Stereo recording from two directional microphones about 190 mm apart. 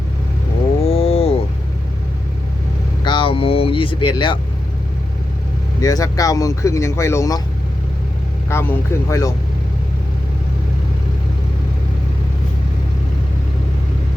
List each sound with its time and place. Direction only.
0.9 s a sound: 30° left (ahead or behind)
3.0 s vehicle: 25° left (ahead or behind)
5.8 s speech: 20° left (ahead or behind)
8.4 s speech: 15° left (ahead or behind)